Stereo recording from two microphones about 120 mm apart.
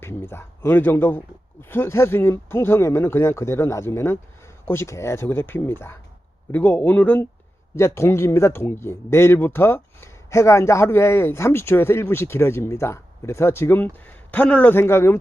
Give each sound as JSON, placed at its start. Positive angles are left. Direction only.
{"t": 0.0, "sound": "speech", "side_deg": 20}